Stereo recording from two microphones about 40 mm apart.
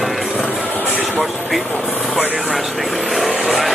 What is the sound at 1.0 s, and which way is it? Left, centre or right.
Vehicle, centre.